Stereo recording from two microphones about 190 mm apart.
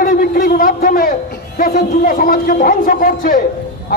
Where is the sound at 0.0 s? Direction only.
50° left (ahead or behind).